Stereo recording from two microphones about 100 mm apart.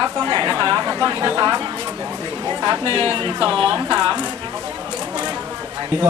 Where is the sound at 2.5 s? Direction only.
45° right (ahead or behind).